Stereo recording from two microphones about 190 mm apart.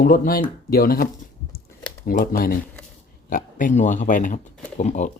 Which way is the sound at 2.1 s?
50° left (ahead or behind).